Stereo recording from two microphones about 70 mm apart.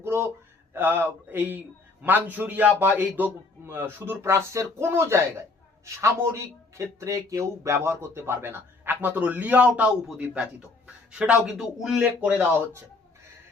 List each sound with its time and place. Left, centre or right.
0.0 s a sound: right
0.7 s a man's voice: right
4.2 s speech: right; by 11.3 s centre
11.4 s speech: centre
11.9 s a man's voice: right